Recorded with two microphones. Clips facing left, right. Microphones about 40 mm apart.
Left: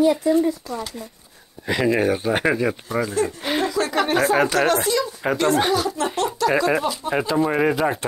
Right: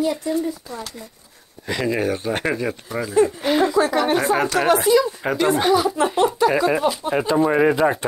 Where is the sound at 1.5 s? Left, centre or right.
Centre.